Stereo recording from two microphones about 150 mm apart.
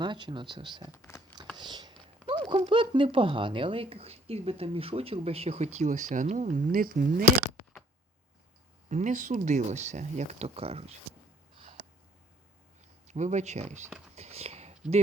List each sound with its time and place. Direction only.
0.0 s speech: 30° right (ahead or behind)
0.9 s speech: 20° left (ahead or behind)
1.5 s a sound: 30° right (ahead or behind)
2.2 s speech: 35° right (ahead or behind); by 7.3 s 65° right (ahead or behind)
8.9 s speech: 55° right (ahead or behind)
13.1 s speech: 50° right (ahead or behind)
14.2 s a sound: 45° right (ahead or behind)